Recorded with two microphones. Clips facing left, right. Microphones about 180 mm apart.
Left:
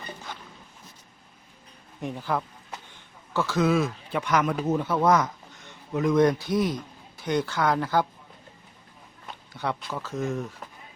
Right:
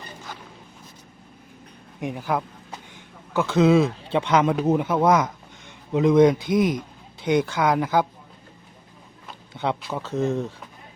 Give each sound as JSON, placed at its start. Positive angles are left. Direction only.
{"t": 2.0, "sound": "a man's voice", "side_deg": -10}
{"t": 9.6, "sound": "speech", "side_deg": -25}